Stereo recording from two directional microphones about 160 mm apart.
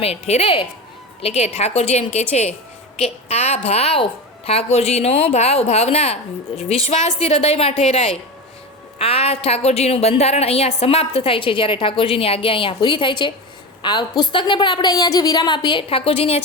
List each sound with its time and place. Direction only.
0.0 s a woman's voice: 40° left (ahead or behind)